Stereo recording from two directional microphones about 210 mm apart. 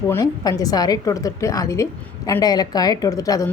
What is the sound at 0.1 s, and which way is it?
A woman's voice, 15° left (ahead or behind).